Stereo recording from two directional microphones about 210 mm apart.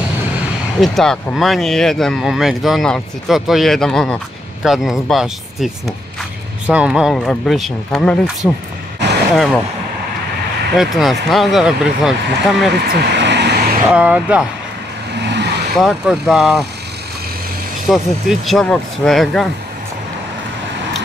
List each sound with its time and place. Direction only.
0.7 s speech: centre (ahead or behind)
10.8 s speech: centre (ahead or behind)
12.8 s vehicle: 50° right (ahead or behind)
13.8 s speech: 5° right (ahead or behind)
15.1 s vehicle: 55° right (ahead or behind)
15.8 s speech: centre (ahead or behind)
17.8 s speech: centre (ahead or behind)